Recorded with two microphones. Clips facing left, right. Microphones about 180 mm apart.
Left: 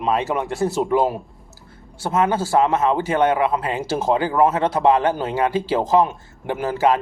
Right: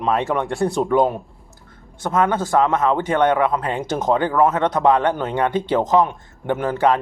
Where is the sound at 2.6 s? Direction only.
30° left (ahead or behind).